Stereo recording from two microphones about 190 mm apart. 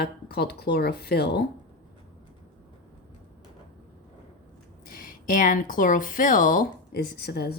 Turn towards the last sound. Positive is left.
turn(degrees=55)  # may be behind; listen again after turning